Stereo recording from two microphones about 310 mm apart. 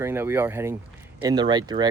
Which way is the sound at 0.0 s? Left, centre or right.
Centre.